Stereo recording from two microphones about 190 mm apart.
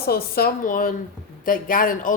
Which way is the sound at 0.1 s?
55° left (ahead or behind).